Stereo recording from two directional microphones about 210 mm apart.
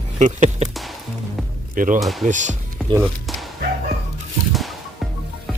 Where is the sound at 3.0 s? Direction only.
Centre (ahead or behind).